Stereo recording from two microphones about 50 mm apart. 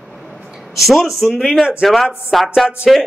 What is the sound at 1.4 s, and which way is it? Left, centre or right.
Speech, centre.